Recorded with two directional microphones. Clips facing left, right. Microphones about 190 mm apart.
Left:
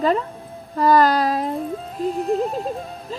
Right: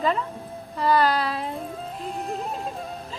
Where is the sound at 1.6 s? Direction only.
Centre (ahead or behind).